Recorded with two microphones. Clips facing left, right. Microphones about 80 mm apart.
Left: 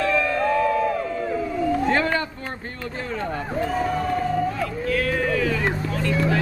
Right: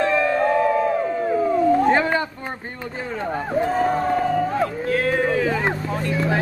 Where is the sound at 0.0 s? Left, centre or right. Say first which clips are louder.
Right 3 dB; right.